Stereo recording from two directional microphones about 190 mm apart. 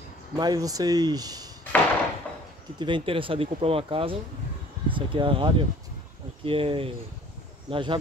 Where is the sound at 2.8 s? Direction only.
25° right (ahead or behind).